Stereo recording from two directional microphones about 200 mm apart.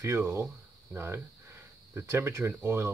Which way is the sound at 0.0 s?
15° right (ahead or behind).